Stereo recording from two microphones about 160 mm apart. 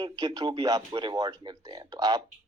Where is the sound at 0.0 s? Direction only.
25° right (ahead or behind).